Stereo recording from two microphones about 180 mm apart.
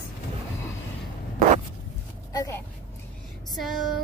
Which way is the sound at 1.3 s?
45° right (ahead or behind).